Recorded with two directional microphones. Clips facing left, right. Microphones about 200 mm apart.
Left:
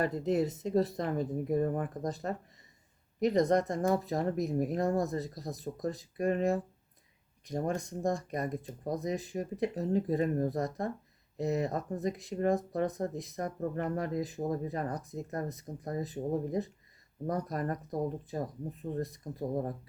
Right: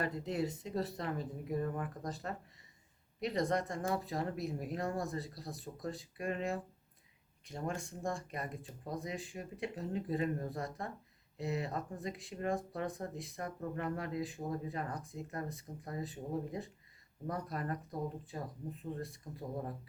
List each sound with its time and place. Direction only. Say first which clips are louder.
0.0 s speech: left 7 dB; 40° left (ahead or behind)